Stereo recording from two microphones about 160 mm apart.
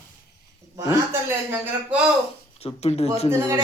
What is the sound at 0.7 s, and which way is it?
A man's voice, 15° right (ahead or behind).